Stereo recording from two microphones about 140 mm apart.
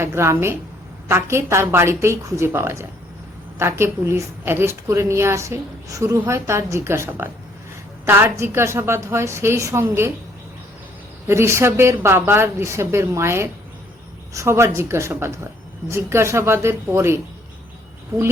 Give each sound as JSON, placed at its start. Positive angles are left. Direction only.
{"t": 0.0, "sound": "a woman's voice", "side_deg": -20}
{"t": 11.3, "sound": "a woman's voice", "side_deg": -20}